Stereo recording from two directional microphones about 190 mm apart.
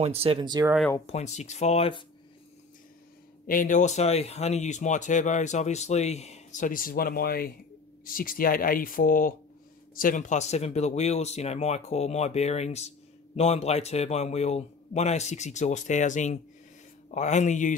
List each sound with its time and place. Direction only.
0.0 s speech: 30° right (ahead or behind)
1.0 s speech: 35° left (ahead or behind)
3.4 s speech: 45° left (ahead or behind)